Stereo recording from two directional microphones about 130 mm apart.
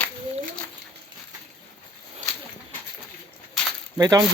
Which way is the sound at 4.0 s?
30° right (ahead or behind).